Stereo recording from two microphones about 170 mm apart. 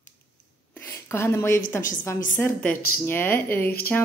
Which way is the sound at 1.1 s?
15° left (ahead or behind).